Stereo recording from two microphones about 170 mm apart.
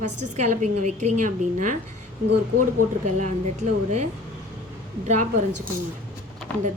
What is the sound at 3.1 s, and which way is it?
A woman's voice, 45° right (ahead or behind).